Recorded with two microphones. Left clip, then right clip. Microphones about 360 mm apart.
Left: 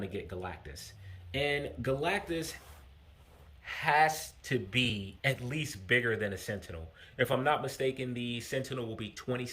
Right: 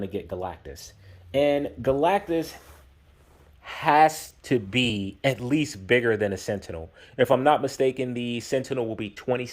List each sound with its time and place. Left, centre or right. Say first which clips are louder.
0.0 s speech: right 8 dB; centre
3.6 s speech: right 8 dB; centre